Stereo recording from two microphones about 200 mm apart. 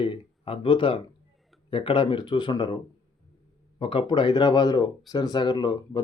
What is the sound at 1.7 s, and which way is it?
Speech, 25° left (ahead or behind).